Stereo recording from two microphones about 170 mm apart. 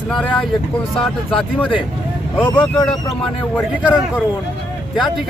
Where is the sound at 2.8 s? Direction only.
Centre (ahead or behind).